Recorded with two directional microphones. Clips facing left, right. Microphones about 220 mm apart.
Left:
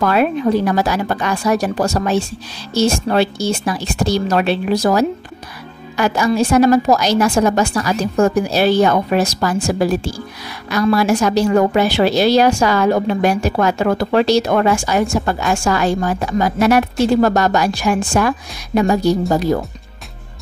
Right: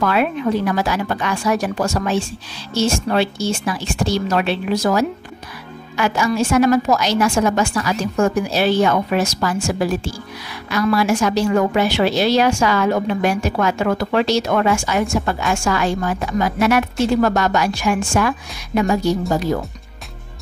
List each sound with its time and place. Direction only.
0.0 s a woman's voice: 40° left (ahead or behind)